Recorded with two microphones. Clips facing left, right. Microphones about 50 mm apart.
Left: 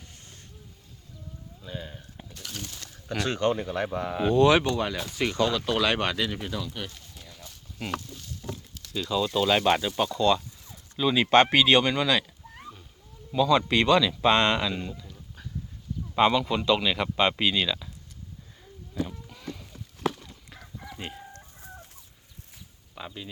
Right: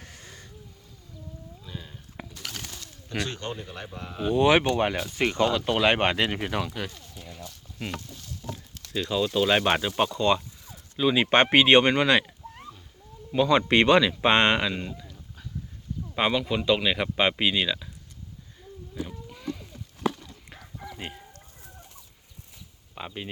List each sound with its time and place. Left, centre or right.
1.6 s speech: centre
2.3 s speech: right
3.6 s a man's voice: left
4.4 s speech: right
6.1 s speech: right
7.8 s speech: centre
8.9 s speech: right
9.1 s speech: centre
11.5 s speech: right
13.3 s speech: right
14.6 s speech: centre
16.1 s speech: centre
19.0 s a sound: centre
23.0 s a sound: right